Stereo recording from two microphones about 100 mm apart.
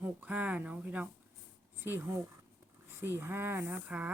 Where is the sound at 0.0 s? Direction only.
15° right (ahead or behind).